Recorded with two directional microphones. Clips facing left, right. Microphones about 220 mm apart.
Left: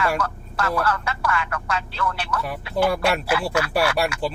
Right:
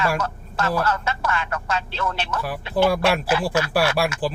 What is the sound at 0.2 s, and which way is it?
Speech, 20° right (ahead or behind).